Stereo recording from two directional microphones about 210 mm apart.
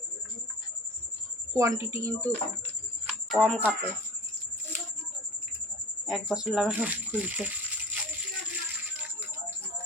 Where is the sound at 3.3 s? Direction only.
Centre (ahead or behind).